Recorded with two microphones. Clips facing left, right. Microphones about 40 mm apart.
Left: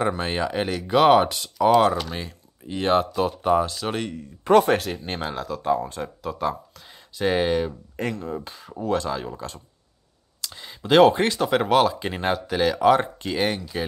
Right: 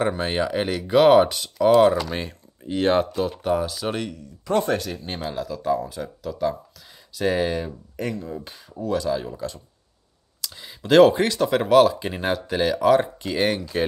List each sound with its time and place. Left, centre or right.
0.0 s speech: centre
2.6 s speech: centre
4.5 s speech: left
7.1 s speech: centre
7.5 s speech: left
8.8 s speech: left
9.1 s speech: centre
13.7 s speech: centre